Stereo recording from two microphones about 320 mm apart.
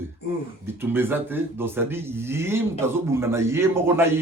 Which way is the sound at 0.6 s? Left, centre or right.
Centre.